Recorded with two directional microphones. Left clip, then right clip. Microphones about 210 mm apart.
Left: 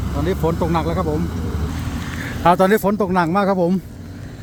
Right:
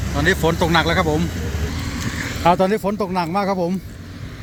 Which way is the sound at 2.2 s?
5° left (ahead or behind).